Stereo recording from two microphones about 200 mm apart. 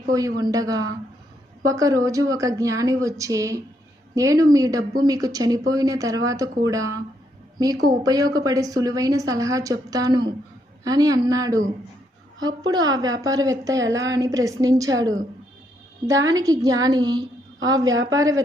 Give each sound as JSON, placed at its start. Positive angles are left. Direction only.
{"t": 0.1, "sound": "a woman's voice", "side_deg": -15}